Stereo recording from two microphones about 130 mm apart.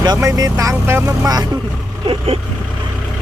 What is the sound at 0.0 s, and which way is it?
Speech, 30° right (ahead or behind).